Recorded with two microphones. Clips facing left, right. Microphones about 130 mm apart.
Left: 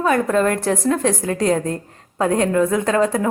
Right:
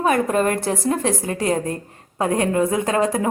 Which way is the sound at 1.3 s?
60° left (ahead or behind).